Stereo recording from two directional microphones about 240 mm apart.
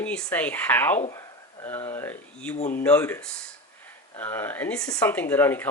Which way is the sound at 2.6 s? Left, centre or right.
Left.